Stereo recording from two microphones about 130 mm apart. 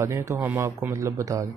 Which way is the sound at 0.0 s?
20° right (ahead or behind).